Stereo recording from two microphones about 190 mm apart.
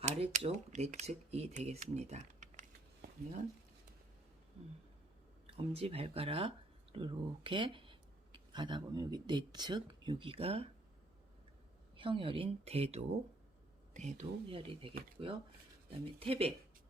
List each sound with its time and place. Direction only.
0.0 s speech: 35° right (ahead or behind)
5.5 s speech: 30° right (ahead or behind)
11.9 s speech: 25° right (ahead or behind)